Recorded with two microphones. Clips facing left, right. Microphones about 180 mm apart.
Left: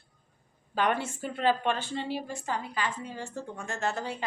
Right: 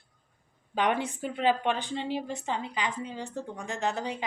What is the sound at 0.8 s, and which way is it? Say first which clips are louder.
A woman's voice: right 1 dB; 15° right (ahead or behind).